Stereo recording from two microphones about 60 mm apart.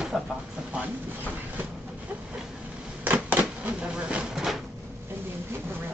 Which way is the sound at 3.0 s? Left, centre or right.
Right.